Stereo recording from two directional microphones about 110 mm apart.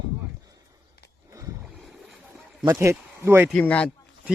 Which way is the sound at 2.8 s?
25° right (ahead or behind).